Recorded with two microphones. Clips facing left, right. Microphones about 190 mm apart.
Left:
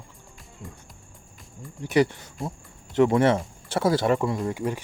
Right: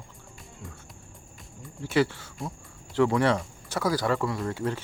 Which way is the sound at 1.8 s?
20° left (ahead or behind).